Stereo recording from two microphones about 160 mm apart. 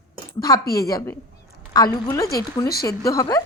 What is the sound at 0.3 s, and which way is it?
A woman's voice, 20° left (ahead or behind).